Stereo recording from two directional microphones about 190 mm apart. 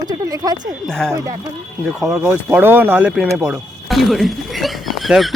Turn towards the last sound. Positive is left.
turn(degrees=0)  # may be behind; listen again after turning